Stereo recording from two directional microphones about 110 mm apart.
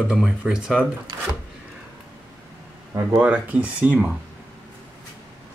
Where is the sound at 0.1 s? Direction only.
10° right (ahead or behind).